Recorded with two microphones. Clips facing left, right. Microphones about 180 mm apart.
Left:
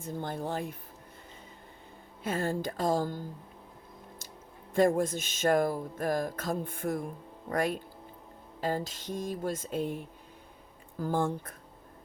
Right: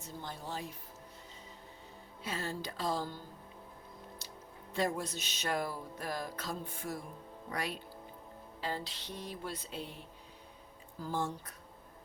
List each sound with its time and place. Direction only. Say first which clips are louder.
0.0 s speech: left 9 dB; 55° left (ahead or behind)
2.2 s music: left 8 dB; 50° left (ahead or behind)
4.7 s music: left 9 dB; 50° left (ahead or behind)
11.0 s music: left 7 dB; 55° left (ahead or behind)